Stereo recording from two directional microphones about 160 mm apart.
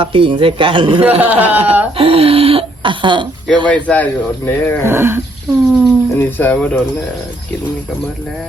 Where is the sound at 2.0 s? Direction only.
35° right (ahead or behind).